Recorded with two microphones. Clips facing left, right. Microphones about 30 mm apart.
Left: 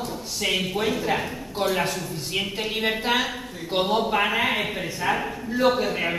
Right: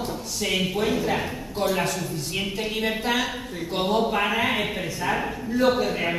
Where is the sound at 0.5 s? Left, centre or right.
Centre.